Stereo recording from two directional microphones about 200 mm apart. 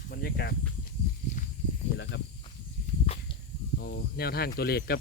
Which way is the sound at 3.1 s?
30° left (ahead or behind).